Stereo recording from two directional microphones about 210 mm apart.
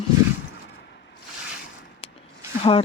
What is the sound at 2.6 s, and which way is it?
Speech, 25° left (ahead or behind).